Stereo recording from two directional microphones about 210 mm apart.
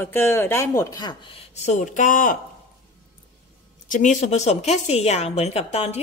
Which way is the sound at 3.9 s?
35° left (ahead or behind).